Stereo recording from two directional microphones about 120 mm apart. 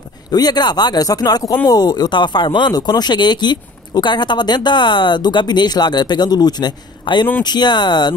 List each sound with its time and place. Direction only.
0.3 s speech: 35° left (ahead or behind)